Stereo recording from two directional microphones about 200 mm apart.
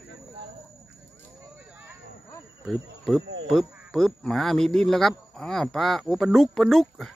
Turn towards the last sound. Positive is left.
turn(degrees=0)  # may be behind; listen again after turning